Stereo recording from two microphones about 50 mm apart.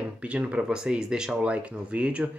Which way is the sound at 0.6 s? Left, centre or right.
Centre.